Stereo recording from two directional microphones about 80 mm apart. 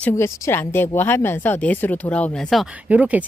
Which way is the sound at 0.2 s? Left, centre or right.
Left.